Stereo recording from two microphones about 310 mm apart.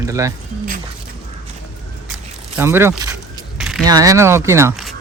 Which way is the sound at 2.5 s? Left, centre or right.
Centre.